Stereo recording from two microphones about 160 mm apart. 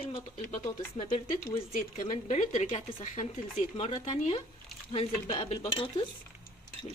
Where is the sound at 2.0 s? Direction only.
50° left (ahead or behind).